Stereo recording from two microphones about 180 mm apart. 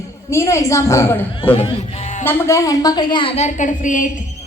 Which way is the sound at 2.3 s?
15° left (ahead or behind).